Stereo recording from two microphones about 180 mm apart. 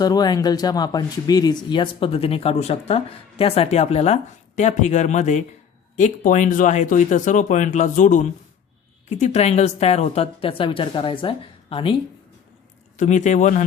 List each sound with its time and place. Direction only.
0.0 s speech: 20° left (ahead or behind)
13.0 s speech: 40° left (ahead or behind)